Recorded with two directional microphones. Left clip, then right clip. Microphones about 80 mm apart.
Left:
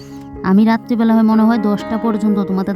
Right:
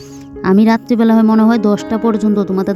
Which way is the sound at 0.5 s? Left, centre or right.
Right.